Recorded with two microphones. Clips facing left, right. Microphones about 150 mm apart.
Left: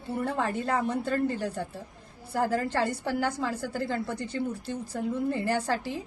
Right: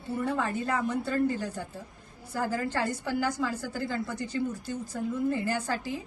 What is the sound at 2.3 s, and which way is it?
Speech, 65° left (ahead or behind).